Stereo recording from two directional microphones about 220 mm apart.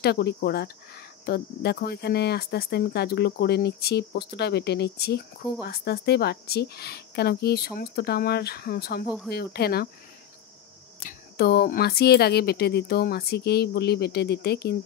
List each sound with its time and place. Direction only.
0.0 s speech: 45° left (ahead or behind)
11.1 s speech: 45° left (ahead or behind)